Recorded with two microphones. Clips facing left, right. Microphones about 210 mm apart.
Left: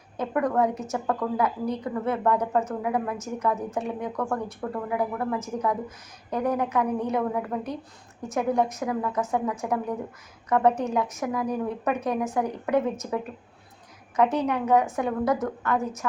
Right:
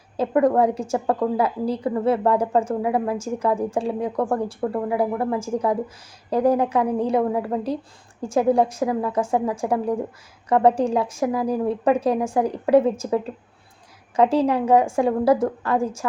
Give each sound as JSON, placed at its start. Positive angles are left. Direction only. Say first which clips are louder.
{"t": 0.2, "sound": "a woman's voice", "louder": "right 6 dB", "side_deg": -30}
{"t": 14.2, "sound": "a woman's voice", "louder": "right 5 dB", "side_deg": -30}